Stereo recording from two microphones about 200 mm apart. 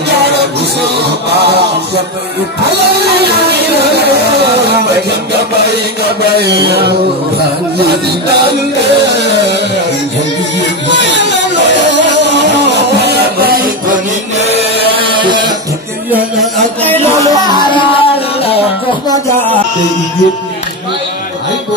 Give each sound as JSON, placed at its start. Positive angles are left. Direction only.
{"t": 3.8, "sound": "music", "side_deg": -55}
{"t": 6.3, "sound": "a sound", "side_deg": -55}
{"t": 9.2, "sound": "music", "side_deg": -60}
{"t": 11.3, "sound": "music", "side_deg": -65}
{"t": 16.8, "sound": "music", "side_deg": 10}
{"t": 17.6, "sound": "music", "side_deg": 25}